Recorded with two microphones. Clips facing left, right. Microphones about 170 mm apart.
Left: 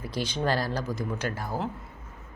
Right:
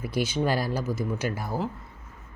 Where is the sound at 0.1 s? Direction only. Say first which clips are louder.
Right 2 dB; 10° right (ahead or behind).